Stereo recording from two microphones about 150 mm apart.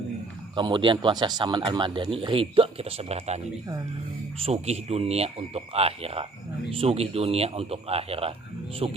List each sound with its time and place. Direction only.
0.5 s speech: 30° right (ahead or behind)